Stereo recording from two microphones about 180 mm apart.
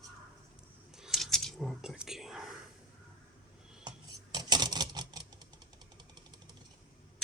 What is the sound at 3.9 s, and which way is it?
Scissors, 25° right (ahead or behind).